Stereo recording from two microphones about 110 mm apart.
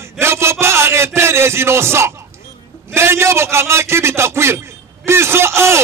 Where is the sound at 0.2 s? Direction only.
25° right (ahead or behind).